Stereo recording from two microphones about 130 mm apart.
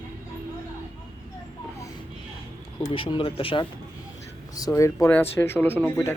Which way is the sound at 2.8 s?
45° left (ahead or behind).